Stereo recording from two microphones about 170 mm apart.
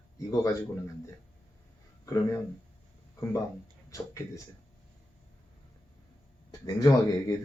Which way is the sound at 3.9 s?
20° left (ahead or behind).